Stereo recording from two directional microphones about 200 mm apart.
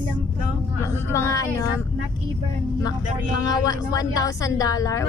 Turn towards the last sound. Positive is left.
turn(degrees=15)  # may be behind; listen again after turning